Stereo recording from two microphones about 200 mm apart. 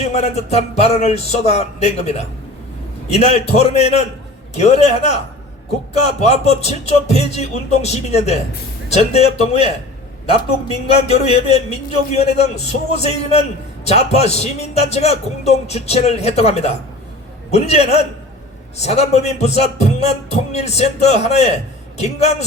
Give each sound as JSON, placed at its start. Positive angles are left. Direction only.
{"t": 0.1, "sound": "a man's voice", "side_deg": 30}